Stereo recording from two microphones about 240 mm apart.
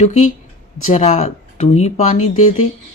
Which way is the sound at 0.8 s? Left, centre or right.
Left.